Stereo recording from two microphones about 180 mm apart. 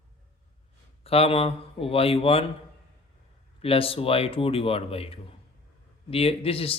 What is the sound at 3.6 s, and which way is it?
A man's voice, 30° left (ahead or behind).